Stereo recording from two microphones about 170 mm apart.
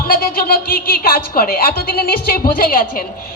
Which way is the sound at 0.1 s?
60° left (ahead or behind).